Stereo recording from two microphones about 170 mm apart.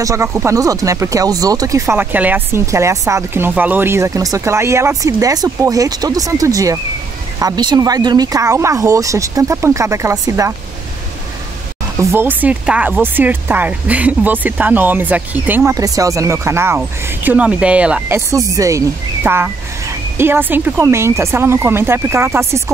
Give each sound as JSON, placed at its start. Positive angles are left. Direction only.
{"t": 0.0, "sound": "speech", "side_deg": -15}
{"t": 12.0, "sound": "speech", "side_deg": -15}